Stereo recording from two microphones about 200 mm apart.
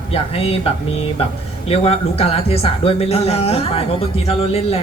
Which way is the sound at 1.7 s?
30° left (ahead or behind).